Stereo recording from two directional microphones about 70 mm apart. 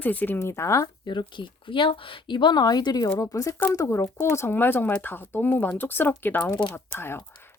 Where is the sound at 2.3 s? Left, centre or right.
Left.